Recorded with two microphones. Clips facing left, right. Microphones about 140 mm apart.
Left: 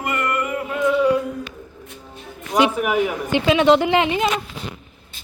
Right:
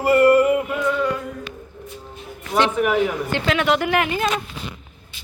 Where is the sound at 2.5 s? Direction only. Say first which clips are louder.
Even; 10° left (ahead or behind).